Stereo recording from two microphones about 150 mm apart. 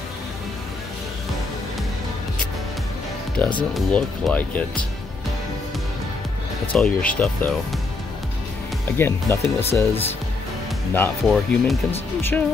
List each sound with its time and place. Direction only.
3.4 s speech: 10° left (ahead or behind)
6.7 s speech: 10° left (ahead or behind)
8.9 s speech: 15° left (ahead or behind)
11.2 s speech: centre (ahead or behind)
12.2 s speech: 15° left (ahead or behind)